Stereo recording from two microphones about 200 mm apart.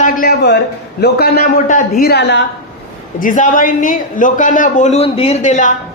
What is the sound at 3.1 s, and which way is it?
Speech, 40° left (ahead or behind).